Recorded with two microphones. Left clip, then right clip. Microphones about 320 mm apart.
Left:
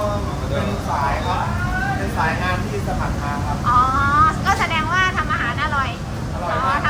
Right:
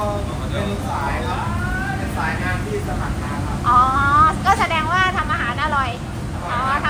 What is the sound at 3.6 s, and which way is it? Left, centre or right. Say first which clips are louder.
Vehicle: right 2 dB; centre.